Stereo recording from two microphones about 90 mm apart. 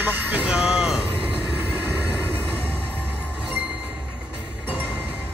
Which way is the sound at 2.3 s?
20° left (ahead or behind).